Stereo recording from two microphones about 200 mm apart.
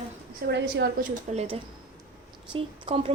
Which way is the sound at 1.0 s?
30° right (ahead or behind).